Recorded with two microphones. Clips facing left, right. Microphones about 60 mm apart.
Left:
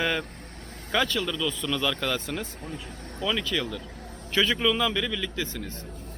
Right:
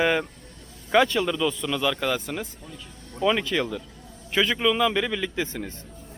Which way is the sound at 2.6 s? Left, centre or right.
Left.